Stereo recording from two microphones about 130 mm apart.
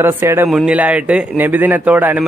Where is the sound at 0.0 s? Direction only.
15° right (ahead or behind).